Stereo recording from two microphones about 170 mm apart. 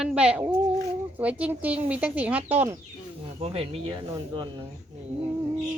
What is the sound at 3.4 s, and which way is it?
Speech, 35° right (ahead or behind).